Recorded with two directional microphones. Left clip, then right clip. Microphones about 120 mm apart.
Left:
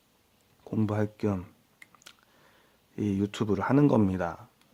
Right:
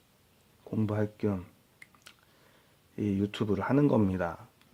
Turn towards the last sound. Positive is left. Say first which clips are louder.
# left 2 dB
turn(degrees=15)  # may be behind; listen again after turning